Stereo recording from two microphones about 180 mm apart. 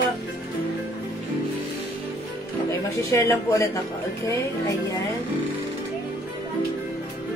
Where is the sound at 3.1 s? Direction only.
15° left (ahead or behind).